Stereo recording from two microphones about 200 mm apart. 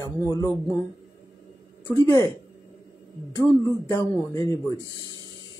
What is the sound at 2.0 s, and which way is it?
Speech, 15° left (ahead or behind).